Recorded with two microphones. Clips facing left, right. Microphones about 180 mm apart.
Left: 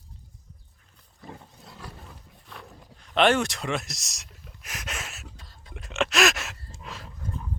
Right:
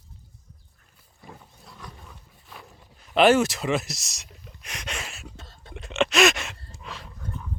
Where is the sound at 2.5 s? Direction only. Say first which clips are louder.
Left 1 dB; 5° right (ahead or behind).